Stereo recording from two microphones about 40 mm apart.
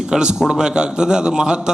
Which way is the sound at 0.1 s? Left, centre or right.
Centre.